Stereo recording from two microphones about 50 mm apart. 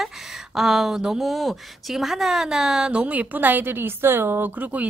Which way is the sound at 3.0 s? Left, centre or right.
Right.